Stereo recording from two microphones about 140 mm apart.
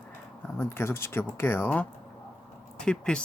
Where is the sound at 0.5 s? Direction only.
15° left (ahead or behind).